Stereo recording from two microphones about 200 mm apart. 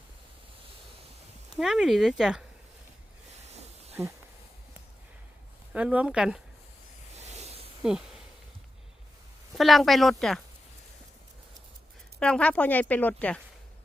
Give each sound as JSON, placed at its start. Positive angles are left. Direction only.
{"t": 1.5, "sound": "speech", "side_deg": 0}
{"t": 3.4, "sound": "snake", "side_deg": -30}
{"t": 5.7, "sound": "speech", "side_deg": -5}
{"t": 7.8, "sound": "speech", "side_deg": -5}
{"t": 9.6, "sound": "speech", "side_deg": 0}
{"t": 12.2, "sound": "speech", "side_deg": 5}